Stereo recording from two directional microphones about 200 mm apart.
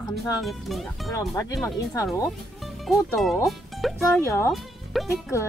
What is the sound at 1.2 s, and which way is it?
Speech, 15° left (ahead or behind).